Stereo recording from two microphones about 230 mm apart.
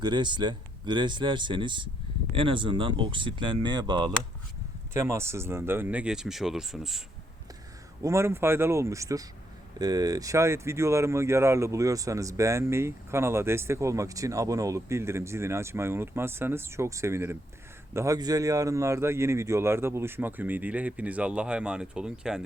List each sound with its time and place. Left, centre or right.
0.0 s speech: centre
8.0 s speech: centre